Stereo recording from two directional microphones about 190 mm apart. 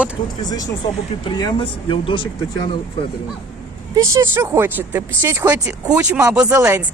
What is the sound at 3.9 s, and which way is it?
Speech, 15° right (ahead or behind).